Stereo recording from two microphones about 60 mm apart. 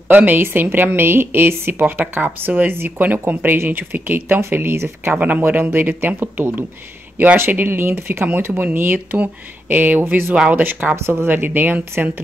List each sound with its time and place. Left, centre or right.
0.1 s speech: right
5.1 s speech: right
11.0 s speech: right
11.2 s speech: right